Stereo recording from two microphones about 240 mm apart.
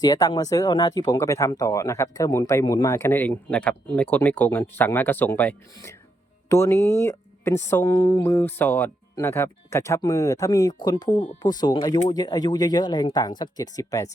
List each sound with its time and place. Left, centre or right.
0.0 s speech: centre